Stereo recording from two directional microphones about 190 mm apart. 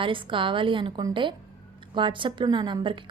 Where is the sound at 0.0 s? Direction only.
25° right (ahead or behind).